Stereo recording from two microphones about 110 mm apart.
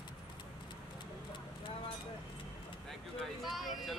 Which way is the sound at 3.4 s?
Centre (ahead or behind).